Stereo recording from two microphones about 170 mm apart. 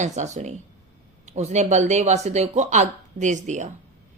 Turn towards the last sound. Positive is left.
turn(degrees=-45)  # may be behind; listen again after turning